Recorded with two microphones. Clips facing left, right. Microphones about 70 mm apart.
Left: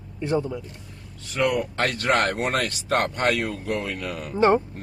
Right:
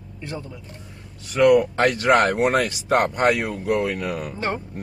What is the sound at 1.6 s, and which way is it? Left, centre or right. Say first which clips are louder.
Speech: right 5 dB; centre.